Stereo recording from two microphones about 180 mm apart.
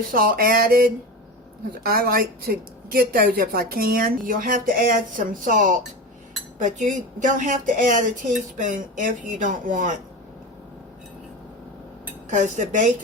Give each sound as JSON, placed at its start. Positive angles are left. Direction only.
{"t": 0.0, "sound": "a woman's voice", "side_deg": -50}
{"t": 12.3, "sound": "a woman's voice", "side_deg": -40}